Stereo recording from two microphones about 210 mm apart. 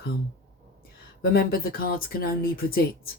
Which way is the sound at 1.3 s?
45° left (ahead or behind).